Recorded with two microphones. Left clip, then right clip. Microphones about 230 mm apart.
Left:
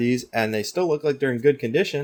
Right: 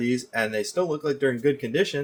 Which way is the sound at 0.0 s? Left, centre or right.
Left.